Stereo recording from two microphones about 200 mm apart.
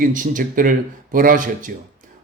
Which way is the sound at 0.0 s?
40° right (ahead or behind).